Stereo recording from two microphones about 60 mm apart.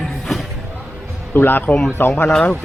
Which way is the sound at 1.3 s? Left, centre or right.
Left.